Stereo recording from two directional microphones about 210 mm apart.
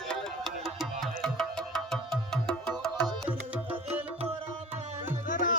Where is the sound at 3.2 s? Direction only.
5° right (ahead or behind).